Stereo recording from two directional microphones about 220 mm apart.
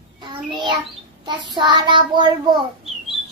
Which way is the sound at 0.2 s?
20° right (ahead or behind).